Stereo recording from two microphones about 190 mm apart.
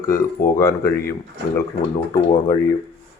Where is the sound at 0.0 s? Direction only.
15° left (ahead or behind).